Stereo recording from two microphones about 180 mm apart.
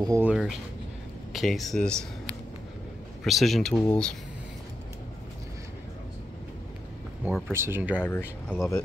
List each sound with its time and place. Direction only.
0.0 s speech: 15° right (ahead or behind)
0.3 s speech: 5° right (ahead or behind)
3.3 s speech: centre (ahead or behind)
7.2 s speech: centre (ahead or behind)
7.5 s speech: 15° right (ahead or behind)
8.0 s speech: 10° left (ahead or behind)